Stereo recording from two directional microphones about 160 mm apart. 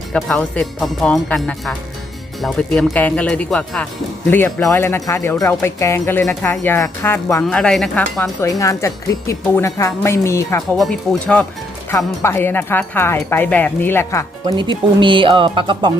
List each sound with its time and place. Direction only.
0.1 s speech: 5° left (ahead or behind)
7.4 s speech: 5° left (ahead or behind)
8.4 s speech: 20° left (ahead or behind)
10.8 s speech: centre (ahead or behind)
11.9 s speech: 15° left (ahead or behind)
14.4 s speech: 30° right (ahead or behind)